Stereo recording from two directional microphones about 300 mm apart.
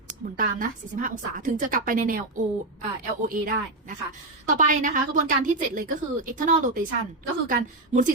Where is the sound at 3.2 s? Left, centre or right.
Right.